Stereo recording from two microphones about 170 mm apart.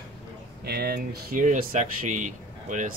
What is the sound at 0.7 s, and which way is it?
Speech, 65° right (ahead or behind).